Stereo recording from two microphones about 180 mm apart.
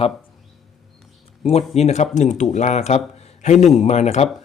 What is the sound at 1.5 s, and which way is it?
Speech, 35° left (ahead or behind).